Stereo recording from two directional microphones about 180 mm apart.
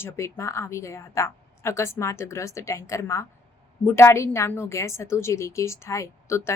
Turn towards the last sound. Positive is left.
turn(degrees=15)  # may be behind; listen again after turning